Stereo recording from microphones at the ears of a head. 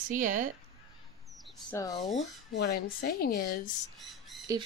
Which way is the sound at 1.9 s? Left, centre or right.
Left.